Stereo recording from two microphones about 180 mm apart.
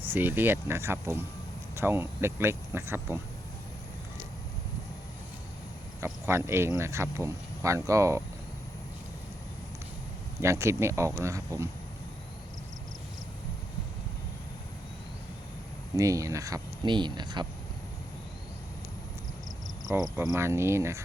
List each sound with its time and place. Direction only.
0.0 s speech: 10° right (ahead or behind)
6.2 s speech: 15° right (ahead or behind)
10.4 s speech: 15° right (ahead or behind)
16.0 s speech: 20° right (ahead or behind)
19.9 s speech: 20° right (ahead or behind)